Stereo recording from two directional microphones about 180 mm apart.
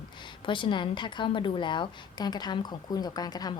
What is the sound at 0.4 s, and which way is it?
A woman's voice, 25° left (ahead or behind).